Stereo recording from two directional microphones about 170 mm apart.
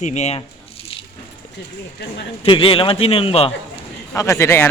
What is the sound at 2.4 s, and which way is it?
A man's voice, 30° left (ahead or behind).